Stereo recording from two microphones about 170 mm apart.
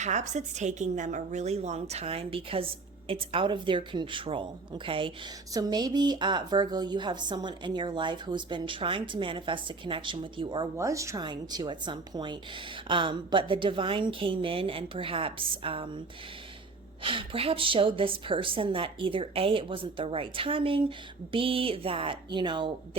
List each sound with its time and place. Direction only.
0.0 s a woman's voice: 45° right (ahead or behind); by 10.7 s 30° right (ahead or behind)
10.8 s speech: 20° right (ahead or behind)
17.0 s a woman's voice: 30° right (ahead or behind)